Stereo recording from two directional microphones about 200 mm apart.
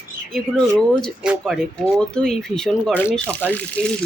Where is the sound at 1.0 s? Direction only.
Centre (ahead or behind).